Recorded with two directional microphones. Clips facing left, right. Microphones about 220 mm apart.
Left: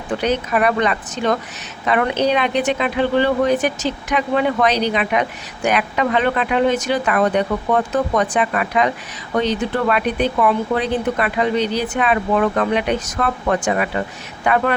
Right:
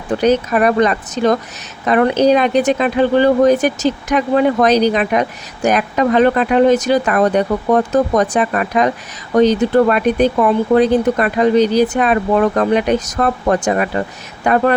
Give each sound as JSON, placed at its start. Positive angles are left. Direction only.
{"t": 0.1, "sound": "speech", "side_deg": -40}